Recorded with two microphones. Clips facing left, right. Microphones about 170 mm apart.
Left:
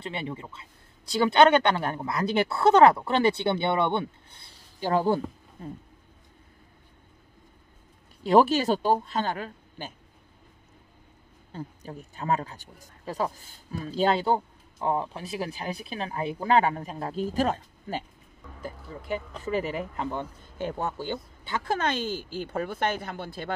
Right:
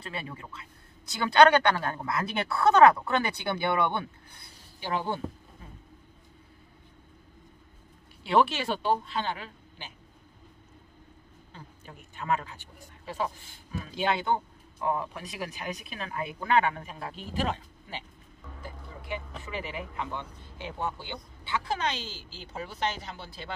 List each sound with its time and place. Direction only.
0.0 s speech: 25° left (ahead or behind)
4.8 s speech: 40° left (ahead or behind)
8.2 s speech: 40° left (ahead or behind)
11.5 s speech: 40° left (ahead or behind)